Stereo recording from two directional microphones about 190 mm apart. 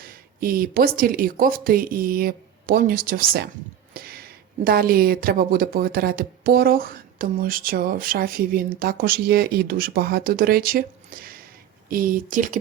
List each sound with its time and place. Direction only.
0.0 s speech: 50° right (ahead or behind)